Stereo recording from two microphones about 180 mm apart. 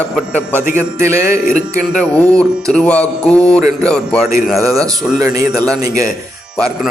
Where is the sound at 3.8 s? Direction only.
5° left (ahead or behind).